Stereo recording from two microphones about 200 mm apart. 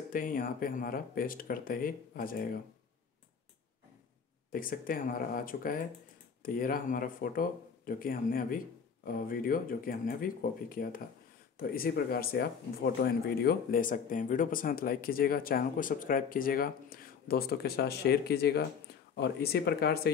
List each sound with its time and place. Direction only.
0.1 s speech: 45° left (ahead or behind)
4.5 s speech: 45° left (ahead or behind)